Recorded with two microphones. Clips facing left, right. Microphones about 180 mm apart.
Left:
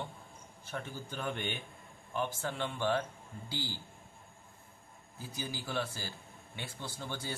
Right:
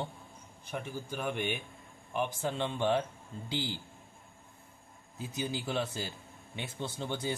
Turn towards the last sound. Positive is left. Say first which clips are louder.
# right 6 dB
turn(degrees=-20)  # may be behind; listen again after turning